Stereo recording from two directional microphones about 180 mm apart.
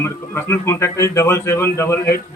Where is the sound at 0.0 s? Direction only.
15° left (ahead or behind).